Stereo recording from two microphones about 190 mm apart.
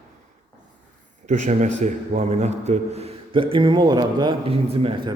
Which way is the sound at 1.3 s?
40° right (ahead or behind).